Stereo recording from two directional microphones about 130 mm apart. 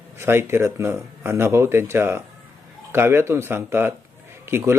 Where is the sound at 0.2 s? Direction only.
20° right (ahead or behind).